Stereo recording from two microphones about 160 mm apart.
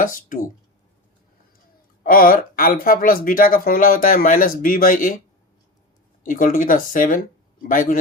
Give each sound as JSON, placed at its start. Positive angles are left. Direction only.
{"t": 0.0, "sound": "speech", "side_deg": 60}
{"t": 2.0, "sound": "speech", "side_deg": 65}
{"t": 6.2, "sound": "speech", "side_deg": 60}